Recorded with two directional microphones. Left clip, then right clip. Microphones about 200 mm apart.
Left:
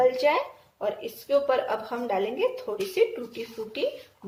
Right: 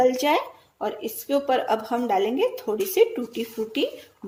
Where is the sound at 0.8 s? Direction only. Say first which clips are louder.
Right 1 dB; 45° right (ahead or behind).